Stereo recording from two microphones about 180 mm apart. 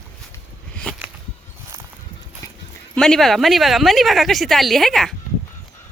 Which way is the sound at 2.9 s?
5° left (ahead or behind).